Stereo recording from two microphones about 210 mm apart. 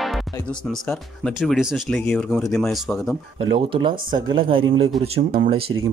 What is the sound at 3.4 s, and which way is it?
Speech, 25° right (ahead or behind).